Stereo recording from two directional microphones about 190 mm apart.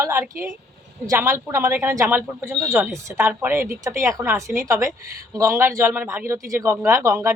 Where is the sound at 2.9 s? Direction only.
15° right (ahead or behind).